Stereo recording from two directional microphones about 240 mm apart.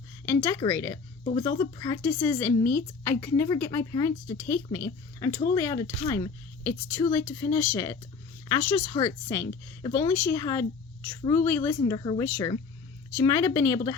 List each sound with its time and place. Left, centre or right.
0.3 s speech: centre
1.2 s speech: left
1.5 s speech: centre